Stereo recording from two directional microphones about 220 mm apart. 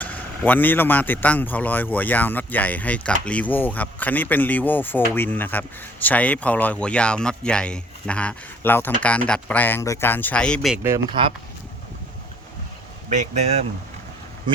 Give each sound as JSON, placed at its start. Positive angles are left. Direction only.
{"t": 0.0, "sound": "a man's voice", "side_deg": 5}
{"t": 10.8, "sound": "speech", "side_deg": -20}
{"t": 13.1, "sound": "speech", "side_deg": -30}